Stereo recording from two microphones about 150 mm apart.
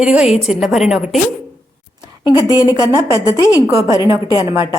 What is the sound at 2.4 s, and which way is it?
Speech, 25° right (ahead or behind).